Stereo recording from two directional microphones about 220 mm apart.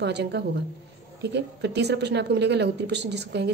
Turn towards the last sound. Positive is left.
turn(degrees=-50)  # may be behind; listen again after turning